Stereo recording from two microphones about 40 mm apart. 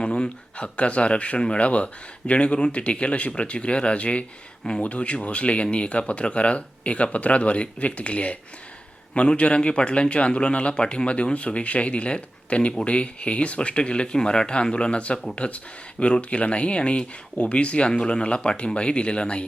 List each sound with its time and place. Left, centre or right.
0.0 s speech: left